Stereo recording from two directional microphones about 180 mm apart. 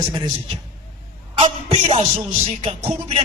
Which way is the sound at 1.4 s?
35° right (ahead or behind).